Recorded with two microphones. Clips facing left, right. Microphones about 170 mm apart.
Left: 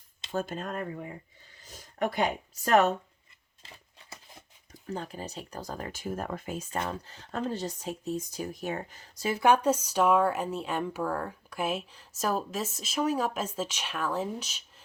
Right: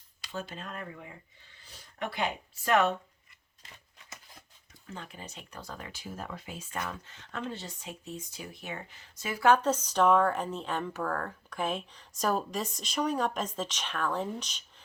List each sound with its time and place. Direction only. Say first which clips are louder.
0.3 s speech: left 7 dB; 45° left (ahead or behind)
3.6 s a sound: left 3 dB; 30° left (ahead or behind)
6.7 s speech: left 2 dB; 30° left (ahead or behind)
9.4 s speech: left 1 dB; 15° left (ahead or behind)